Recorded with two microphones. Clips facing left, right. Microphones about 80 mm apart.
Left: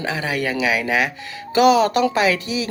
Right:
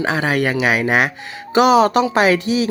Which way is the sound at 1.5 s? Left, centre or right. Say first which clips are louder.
Right 2 dB; right.